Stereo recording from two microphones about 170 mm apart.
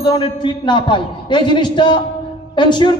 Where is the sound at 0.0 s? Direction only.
25° left (ahead or behind).